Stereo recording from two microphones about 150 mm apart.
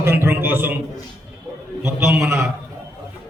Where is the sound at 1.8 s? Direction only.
15° right (ahead or behind).